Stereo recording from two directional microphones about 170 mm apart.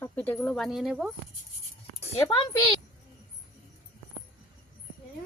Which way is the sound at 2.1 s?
30° left (ahead or behind).